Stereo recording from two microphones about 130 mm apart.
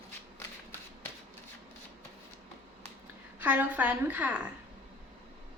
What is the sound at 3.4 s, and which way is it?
A woman's voice, 10° right (ahead or behind).